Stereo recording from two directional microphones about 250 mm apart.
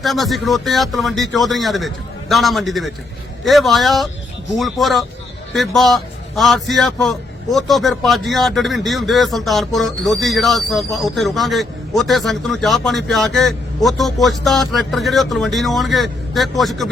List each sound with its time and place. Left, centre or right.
0.0 s a man's voice: centre